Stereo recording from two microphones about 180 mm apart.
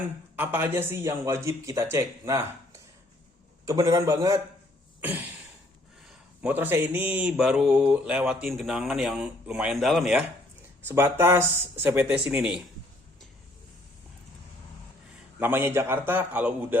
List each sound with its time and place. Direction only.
0.3 s a man's voice: 10° right (ahead or behind)
6.1 s mantra: 10° right (ahead or behind)
10.8 s a man's voice: 15° right (ahead or behind)
15.4 s a man's voice: 10° right (ahead or behind)